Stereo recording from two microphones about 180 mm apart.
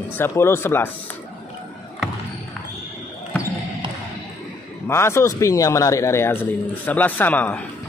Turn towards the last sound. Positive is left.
turn(degrees=10)  # may be behind; listen again after turning